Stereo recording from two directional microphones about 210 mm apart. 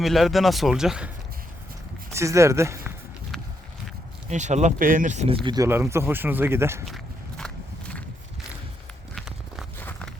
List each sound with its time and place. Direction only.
0.0 s speech: centre (ahead or behind)
2.1 s speech: 15° right (ahead or behind)
4.3 s speech: 35° right (ahead or behind)
5.6 s speech: 10° right (ahead or behind)
6.8 s walk: centre (ahead or behind)
9.1 s walk: centre (ahead or behind)
9.7 s a sound: 10° left (ahead or behind)